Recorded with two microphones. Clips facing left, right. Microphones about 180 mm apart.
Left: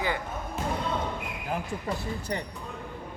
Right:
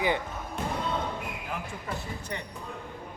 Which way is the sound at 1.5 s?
35° left (ahead or behind).